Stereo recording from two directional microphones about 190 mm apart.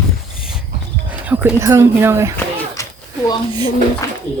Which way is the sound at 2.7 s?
15° left (ahead or behind).